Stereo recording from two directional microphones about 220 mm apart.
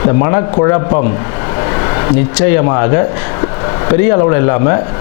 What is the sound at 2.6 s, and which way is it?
Speech, 25° left (ahead or behind).